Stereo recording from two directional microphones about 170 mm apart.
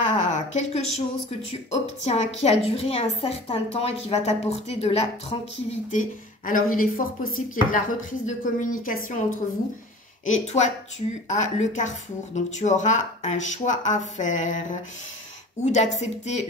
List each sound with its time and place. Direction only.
0.0 s a sound: 45° left (ahead or behind)
1.5 s a woman's voice: 40° left (ahead or behind)
10.2 s speech: 45° left (ahead or behind)
15.6 s speech: 45° left (ahead or behind)